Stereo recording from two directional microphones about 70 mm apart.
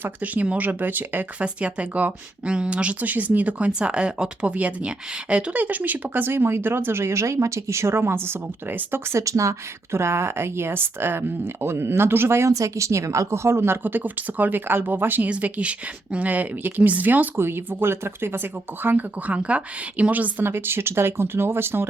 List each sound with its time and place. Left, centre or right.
0.0 s a woman's voice: right